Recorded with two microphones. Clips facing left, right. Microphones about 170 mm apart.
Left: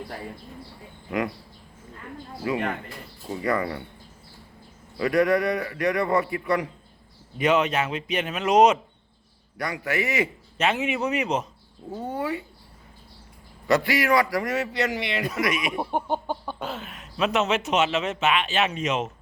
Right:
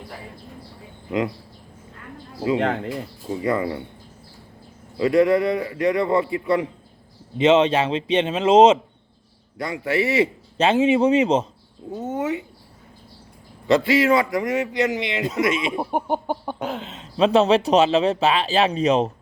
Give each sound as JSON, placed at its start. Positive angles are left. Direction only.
{"t": 2.6, "sound": "speech", "side_deg": -90}
{"t": 3.4, "sound": "a man's voice", "side_deg": -20}
{"t": 4.9, "sound": "a man's voice", "side_deg": -25}
{"t": 13.7, "sound": "a man's voice", "side_deg": -25}
{"t": 15.7, "sound": "speech", "side_deg": -10}